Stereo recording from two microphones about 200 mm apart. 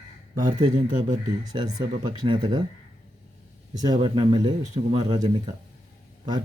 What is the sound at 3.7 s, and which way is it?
Speech, 20° right (ahead or behind).